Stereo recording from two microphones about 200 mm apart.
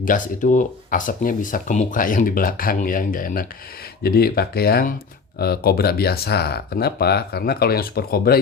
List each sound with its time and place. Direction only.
0.0 s speech: 40° left (ahead or behind)